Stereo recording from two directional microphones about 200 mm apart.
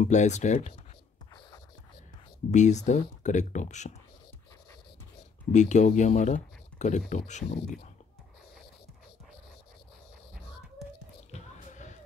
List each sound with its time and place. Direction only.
0.0 s speech: 35° left (ahead or behind)
2.5 s speech: 35° left (ahead or behind)
5.5 s speech: 35° left (ahead or behind)
10.8 s whispering: centre (ahead or behind)
11.3 s a sound: 35° left (ahead or behind)